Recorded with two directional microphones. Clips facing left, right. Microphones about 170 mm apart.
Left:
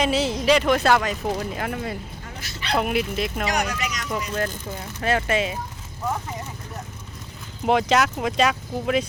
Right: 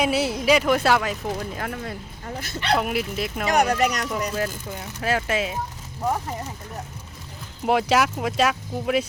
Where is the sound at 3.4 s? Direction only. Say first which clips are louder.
Right 6 dB; 55° right (ahead or behind).